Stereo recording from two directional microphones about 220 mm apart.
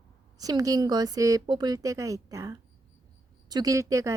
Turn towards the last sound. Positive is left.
turn(degrees=-15)  # may be behind; listen again after turning